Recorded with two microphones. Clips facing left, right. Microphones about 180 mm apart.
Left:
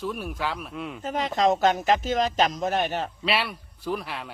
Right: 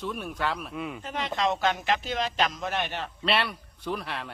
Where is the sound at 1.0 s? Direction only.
40° left (ahead or behind).